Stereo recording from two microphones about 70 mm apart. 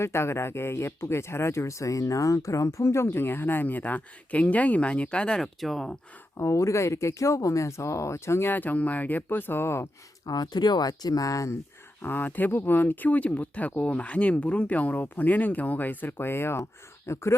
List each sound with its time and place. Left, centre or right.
0.0 s speech: left; by 6.0 s centre
6.3 s speech: left
10.2 s speech: left
12.0 s speech: left